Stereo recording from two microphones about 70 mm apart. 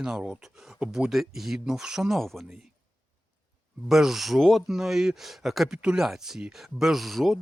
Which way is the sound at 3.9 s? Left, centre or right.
Centre.